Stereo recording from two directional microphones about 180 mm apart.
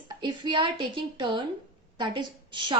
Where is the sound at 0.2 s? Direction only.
25° right (ahead or behind).